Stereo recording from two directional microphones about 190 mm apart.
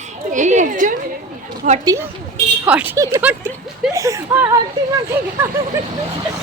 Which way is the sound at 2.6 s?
10° right (ahead or behind).